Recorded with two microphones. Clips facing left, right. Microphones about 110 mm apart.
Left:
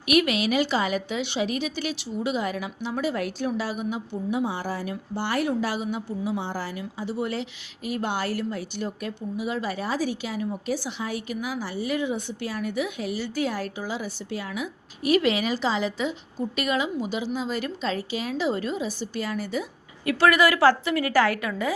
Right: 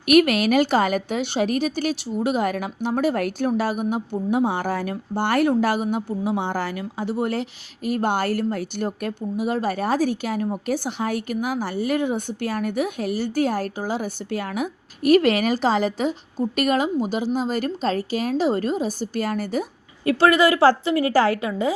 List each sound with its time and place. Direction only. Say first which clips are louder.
0.1 s a woman's voice: right 6 dB; 50° right (ahead or behind)
20.1 s a woman's voice: right 3 dB; 30° right (ahead or behind)